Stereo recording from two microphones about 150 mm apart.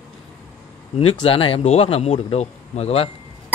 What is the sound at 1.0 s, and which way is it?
Speech, 35° left (ahead or behind).